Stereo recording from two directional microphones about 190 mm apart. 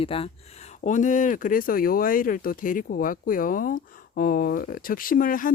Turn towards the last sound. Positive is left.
turn(degrees=45)  # may be behind; listen again after turning